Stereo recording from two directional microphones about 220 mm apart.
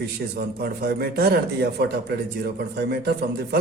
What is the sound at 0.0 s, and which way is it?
A man's voice, 45° right (ahead or behind).